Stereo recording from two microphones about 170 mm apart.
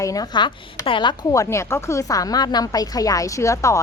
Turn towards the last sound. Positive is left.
turn(degrees=15)  # may be behind; listen again after turning